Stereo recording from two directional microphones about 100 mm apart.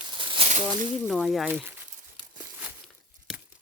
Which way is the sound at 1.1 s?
Centre (ahead or behind).